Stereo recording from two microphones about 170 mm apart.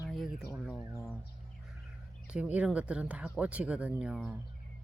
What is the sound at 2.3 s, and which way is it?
Speech, 5° right (ahead or behind).